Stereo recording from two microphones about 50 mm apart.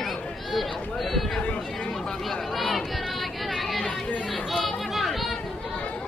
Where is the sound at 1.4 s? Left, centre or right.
Centre.